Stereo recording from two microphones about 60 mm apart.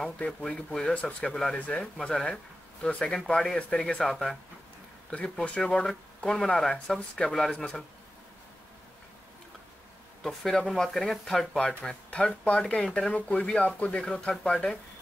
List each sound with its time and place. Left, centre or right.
0.3 s speech: centre
5.4 s speech: left
5.7 s speech: centre
10.2 s speech: centre